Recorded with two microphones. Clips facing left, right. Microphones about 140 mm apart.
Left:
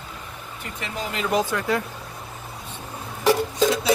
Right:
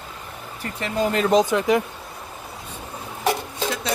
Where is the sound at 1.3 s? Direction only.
20° right (ahead or behind).